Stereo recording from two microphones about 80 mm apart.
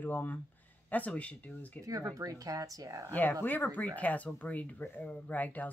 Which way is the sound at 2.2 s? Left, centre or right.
Right.